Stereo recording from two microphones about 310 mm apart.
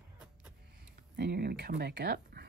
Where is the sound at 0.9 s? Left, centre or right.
Right.